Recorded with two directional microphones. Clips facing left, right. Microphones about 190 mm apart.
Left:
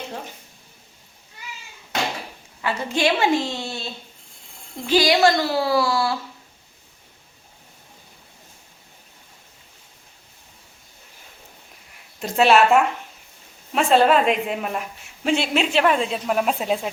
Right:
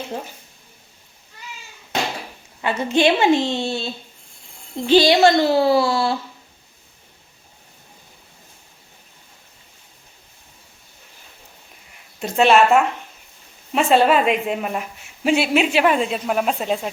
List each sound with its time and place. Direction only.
2.6 s a child's voice: 20° right (ahead or behind)
4.9 s a child's voice: 25° right (ahead or behind)
12.2 s a woman's voice: centre (ahead or behind)